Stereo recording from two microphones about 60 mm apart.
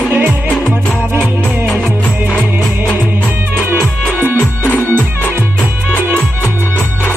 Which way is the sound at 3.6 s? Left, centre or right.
Right.